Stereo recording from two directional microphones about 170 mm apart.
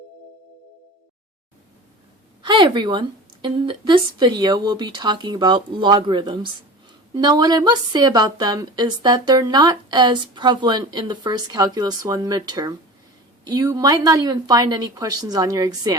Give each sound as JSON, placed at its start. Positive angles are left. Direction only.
{"t": 2.4, "sound": "speech", "side_deg": -25}